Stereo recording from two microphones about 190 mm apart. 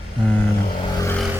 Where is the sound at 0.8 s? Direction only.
15° left (ahead or behind).